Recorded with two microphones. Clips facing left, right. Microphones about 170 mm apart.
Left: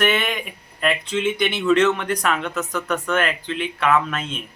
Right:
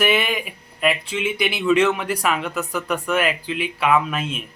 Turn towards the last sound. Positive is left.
turn(degrees=-10)  # may be behind; listen again after turning